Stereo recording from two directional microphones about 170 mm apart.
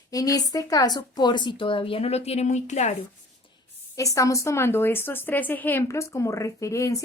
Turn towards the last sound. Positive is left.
turn(degrees=20)  # may be behind; listen again after turning